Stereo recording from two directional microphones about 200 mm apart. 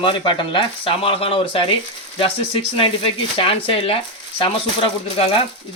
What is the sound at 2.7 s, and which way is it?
Speech, 25° left (ahead or behind).